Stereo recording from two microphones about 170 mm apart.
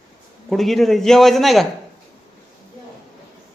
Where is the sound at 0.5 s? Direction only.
Centre (ahead or behind).